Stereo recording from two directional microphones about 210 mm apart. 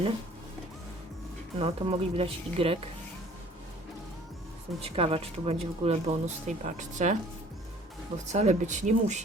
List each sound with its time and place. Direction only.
1.5 s speech: 25° right (ahead or behind)
4.8 s speech: 25° right (ahead or behind)
8.3 s speech: 35° right (ahead or behind)